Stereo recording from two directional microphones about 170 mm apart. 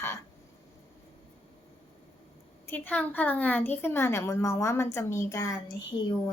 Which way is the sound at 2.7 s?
10° left (ahead or behind).